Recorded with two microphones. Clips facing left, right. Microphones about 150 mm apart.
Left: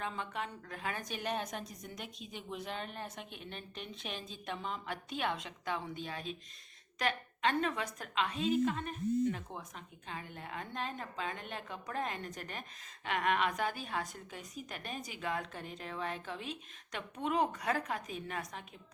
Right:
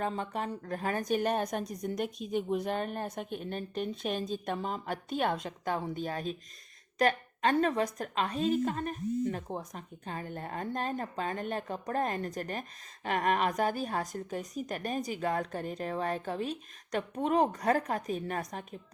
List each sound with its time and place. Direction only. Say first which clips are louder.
0.0 s a woman's voice: right 6 dB; 40° right (ahead or behind)